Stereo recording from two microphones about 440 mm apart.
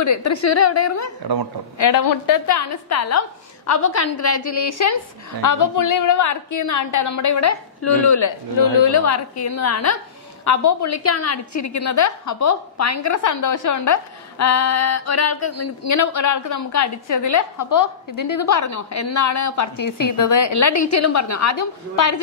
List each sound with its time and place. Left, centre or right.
0.0 s speech: left
1.2 s speech: right
1.8 s speech: left